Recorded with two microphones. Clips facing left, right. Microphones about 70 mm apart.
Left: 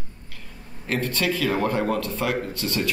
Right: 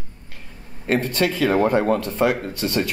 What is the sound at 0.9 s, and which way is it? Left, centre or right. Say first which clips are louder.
Speech: right 4 dB; right.